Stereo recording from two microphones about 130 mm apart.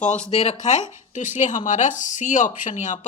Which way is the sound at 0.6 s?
65° left (ahead or behind).